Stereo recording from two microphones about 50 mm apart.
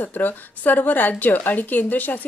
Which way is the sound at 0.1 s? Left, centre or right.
Left.